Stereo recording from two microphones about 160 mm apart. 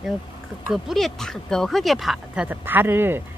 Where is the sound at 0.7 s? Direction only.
Centre (ahead or behind).